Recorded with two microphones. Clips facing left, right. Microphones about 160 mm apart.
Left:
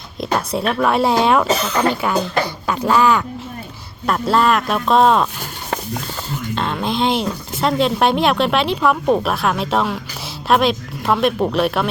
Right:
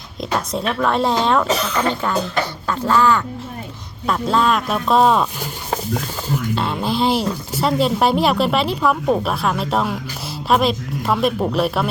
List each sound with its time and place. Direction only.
0.2 s speech: 5° left (ahead or behind)
4.0 s speech: 5° left (ahead or behind)
6.6 s speech: 10° right (ahead or behind)